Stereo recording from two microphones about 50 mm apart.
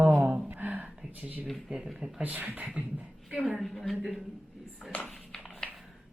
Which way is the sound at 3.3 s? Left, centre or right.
Centre.